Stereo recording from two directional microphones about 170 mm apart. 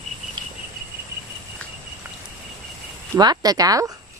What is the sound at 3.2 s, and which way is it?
Speech, 25° right (ahead or behind).